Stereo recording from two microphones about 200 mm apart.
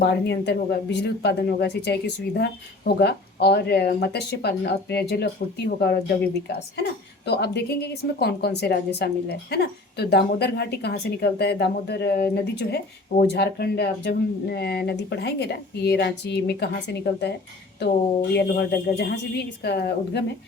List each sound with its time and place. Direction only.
0.0 s a woman's voice: 55° left (ahead or behind)
7.3 s a woman's voice: 55° left (ahead or behind)
18.3 s a woman's voice: 50° left (ahead or behind)